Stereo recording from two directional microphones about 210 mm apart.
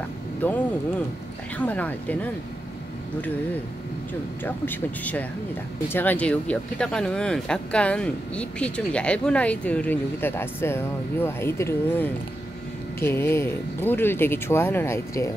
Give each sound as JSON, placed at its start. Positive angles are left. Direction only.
{"t": 0.4, "sound": "speech", "side_deg": 10}
{"t": 1.6, "sound": "speech", "side_deg": 5}
{"t": 4.5, "sound": "speech", "side_deg": 10}